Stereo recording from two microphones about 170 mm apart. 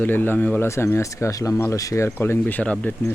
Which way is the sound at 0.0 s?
10° left (ahead or behind).